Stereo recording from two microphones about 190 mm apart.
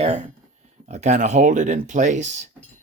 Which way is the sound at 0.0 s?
35° right (ahead or behind).